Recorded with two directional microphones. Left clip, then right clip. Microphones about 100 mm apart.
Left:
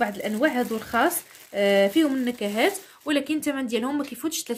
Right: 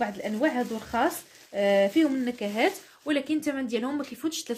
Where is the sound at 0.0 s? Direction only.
30° left (ahead or behind).